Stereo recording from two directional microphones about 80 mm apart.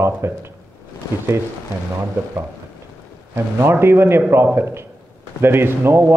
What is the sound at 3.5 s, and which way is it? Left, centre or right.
Speech, right.